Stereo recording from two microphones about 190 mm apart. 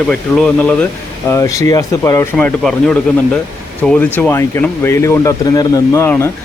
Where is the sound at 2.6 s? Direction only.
5° left (ahead or behind).